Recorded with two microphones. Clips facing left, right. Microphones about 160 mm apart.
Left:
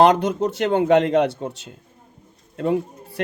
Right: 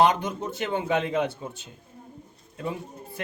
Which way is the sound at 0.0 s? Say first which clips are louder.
Left 6 dB; 75° left (ahead or behind).